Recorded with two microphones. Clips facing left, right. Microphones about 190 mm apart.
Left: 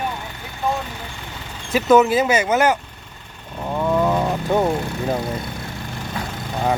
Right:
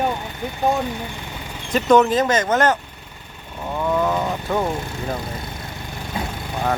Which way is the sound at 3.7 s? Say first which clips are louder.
Left 2 dB; 10° left (ahead or behind).